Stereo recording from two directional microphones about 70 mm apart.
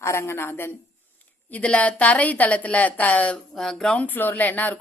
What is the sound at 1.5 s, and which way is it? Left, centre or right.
A woman's voice, centre.